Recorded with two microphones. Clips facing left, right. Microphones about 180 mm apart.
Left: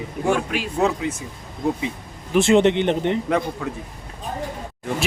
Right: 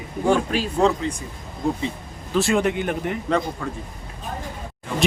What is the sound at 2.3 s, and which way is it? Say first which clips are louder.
Speech: left 5 dB; 20° left (ahead or behind).